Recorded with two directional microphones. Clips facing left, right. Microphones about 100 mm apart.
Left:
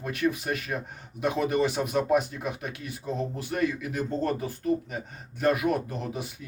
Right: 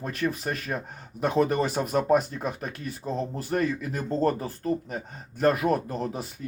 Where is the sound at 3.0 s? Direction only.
30° right (ahead or behind).